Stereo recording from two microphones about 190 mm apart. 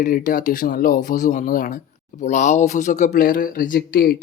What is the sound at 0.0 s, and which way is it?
Speech, 45° left (ahead or behind).